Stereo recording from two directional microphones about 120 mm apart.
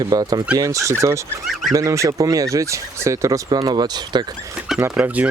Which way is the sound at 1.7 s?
25° right (ahead or behind).